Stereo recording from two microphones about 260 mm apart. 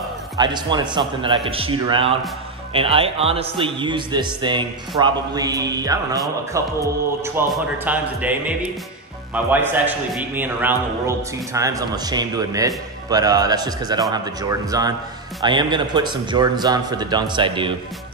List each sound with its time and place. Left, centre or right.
0.4 s a man's voice: centre